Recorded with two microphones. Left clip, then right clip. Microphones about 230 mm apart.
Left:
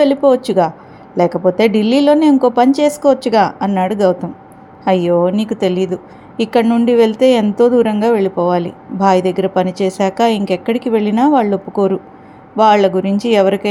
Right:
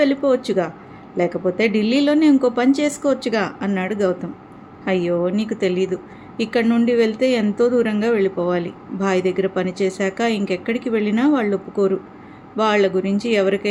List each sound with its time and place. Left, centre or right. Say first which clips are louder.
0.0 s a woman's voice: left 6 dB; left